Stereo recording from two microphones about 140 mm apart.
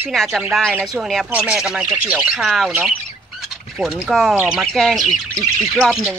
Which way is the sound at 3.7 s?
Centre (ahead or behind).